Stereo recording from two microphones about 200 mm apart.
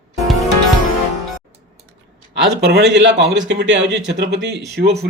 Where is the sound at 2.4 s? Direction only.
55° right (ahead or behind).